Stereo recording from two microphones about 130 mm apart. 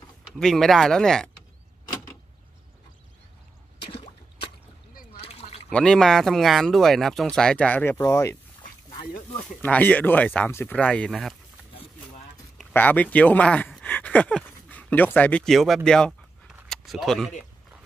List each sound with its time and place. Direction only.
0.4 s speech: 5° left (ahead or behind)
3.8 s drip: 45° left (ahead or behind)
5.3 s a sound: 55° left (ahead or behind)
5.7 s speech: 5° left (ahead or behind); by 8.4 s 25° left (ahead or behind)
9.6 s speech: 10° left (ahead or behind)
12.7 s speech: 15° left (ahead or behind)